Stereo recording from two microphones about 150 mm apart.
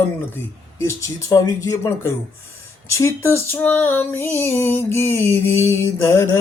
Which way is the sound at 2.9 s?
20° left (ahead or behind).